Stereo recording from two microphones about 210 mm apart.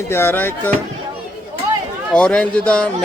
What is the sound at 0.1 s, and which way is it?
Speech, 10° left (ahead or behind).